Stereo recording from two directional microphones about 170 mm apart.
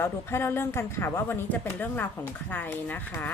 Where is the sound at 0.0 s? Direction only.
15° left (ahead or behind).